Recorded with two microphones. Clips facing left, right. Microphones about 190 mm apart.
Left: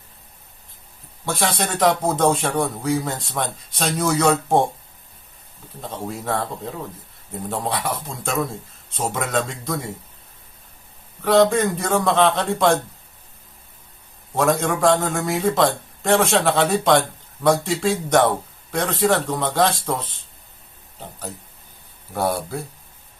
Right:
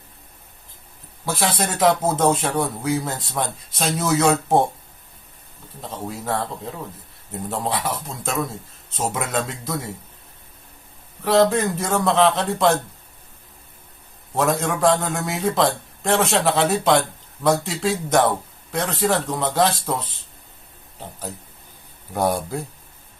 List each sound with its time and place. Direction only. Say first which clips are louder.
1.2 s a man's voice: even; 5° right (ahead or behind)
5.8 s a man's voice: left 1 dB; centre (ahead or behind)
7.5 s a man's voice: even; 5° right (ahead or behind)
11.2 s a man's voice: left 1 dB; centre (ahead or behind)
14.3 s a man's voice: left 2 dB; centre (ahead or behind)
22.1 s speech: right 1 dB; 15° right (ahead or behind)